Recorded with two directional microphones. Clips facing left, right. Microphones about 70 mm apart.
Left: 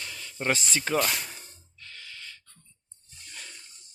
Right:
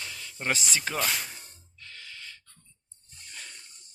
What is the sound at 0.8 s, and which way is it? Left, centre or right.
Speech, centre.